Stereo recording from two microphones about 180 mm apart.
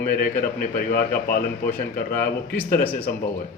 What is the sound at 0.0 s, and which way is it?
Speech, 50° left (ahead or behind).